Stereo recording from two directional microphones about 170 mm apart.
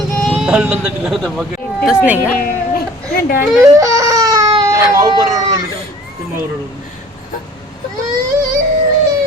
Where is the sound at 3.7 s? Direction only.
20° right (ahead or behind).